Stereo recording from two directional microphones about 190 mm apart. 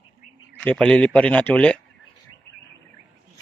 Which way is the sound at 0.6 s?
5° left (ahead or behind).